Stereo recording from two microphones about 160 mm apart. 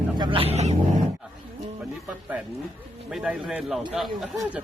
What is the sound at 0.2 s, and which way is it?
Speech, 35° right (ahead or behind).